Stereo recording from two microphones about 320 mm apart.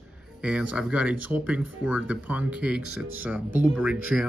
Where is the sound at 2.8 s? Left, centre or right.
Right.